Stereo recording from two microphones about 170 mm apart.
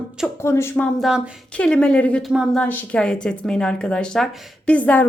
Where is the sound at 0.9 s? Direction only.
5° right (ahead or behind).